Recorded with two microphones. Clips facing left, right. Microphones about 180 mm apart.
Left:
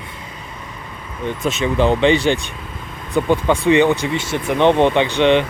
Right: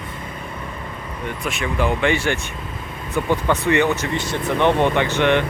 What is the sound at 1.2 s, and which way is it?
Speech, 25° left (ahead or behind).